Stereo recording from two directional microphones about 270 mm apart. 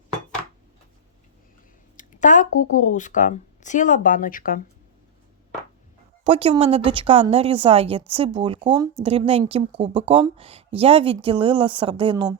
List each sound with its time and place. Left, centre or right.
2.0 s speech: left
6.2 s a woman's voice: centre